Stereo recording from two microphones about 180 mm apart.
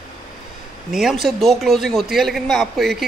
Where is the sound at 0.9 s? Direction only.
Centre (ahead or behind).